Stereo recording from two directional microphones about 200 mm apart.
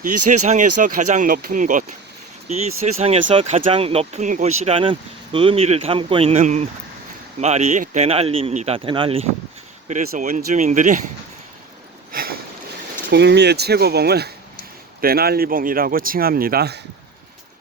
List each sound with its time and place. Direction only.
0.0 s speech: 40° right (ahead or behind)
9.9 s speech: 40° right (ahead or behind)
12.1 s sniff: 50° right (ahead or behind)
13.1 s speech: 60° right (ahead or behind)